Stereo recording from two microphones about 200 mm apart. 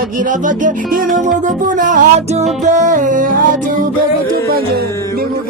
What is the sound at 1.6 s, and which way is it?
Music, 40° right (ahead or behind).